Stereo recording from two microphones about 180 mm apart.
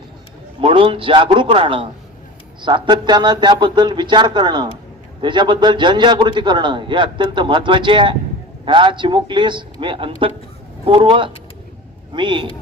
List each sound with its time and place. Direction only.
0.6 s a man's voice: 30° right (ahead or behind)